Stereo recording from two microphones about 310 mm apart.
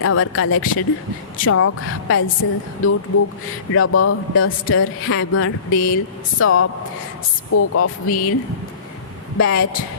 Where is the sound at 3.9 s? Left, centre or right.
Left.